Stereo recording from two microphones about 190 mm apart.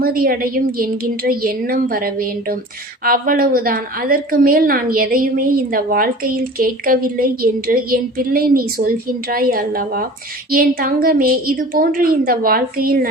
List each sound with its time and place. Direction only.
0.0 s a woman's voice: 50° right (ahead or behind)